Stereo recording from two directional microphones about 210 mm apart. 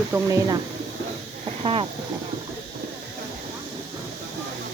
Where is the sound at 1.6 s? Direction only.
25° right (ahead or behind).